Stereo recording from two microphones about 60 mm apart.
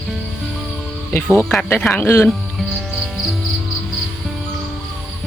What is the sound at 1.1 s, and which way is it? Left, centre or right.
Speech, left.